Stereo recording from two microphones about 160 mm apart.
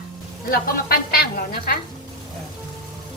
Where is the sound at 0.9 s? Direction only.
75° left (ahead or behind).